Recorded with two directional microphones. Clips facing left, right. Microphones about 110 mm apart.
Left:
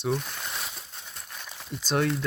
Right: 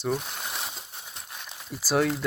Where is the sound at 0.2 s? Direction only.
20° right (ahead or behind).